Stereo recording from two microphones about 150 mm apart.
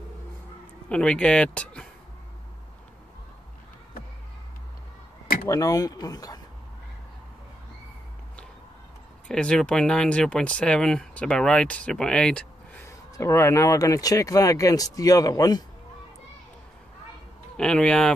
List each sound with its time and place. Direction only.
0.8 s speech: 5° left (ahead or behind)
5.5 s speech: 25° left (ahead or behind)
9.3 s speech: 5° left (ahead or behind)
12.8 s speech: 20° left (ahead or behind)
17.6 s speech: 5° left (ahead or behind)